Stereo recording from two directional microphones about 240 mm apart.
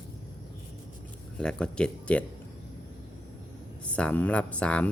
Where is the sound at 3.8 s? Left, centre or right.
Centre.